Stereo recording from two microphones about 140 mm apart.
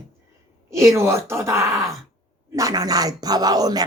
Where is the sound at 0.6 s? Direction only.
20° right (ahead or behind).